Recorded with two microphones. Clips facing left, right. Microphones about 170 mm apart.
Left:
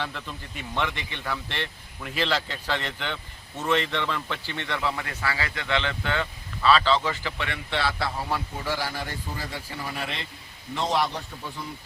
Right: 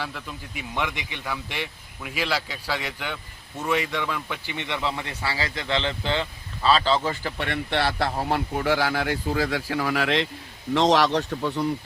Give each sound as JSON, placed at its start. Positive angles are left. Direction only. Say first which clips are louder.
{"t": 0.0, "sound": "speech", "louder": "even", "side_deg": -5}